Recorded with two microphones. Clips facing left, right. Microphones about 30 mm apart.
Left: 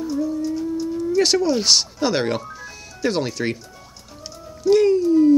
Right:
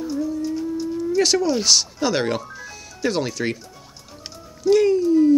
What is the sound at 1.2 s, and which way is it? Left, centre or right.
Speech, centre.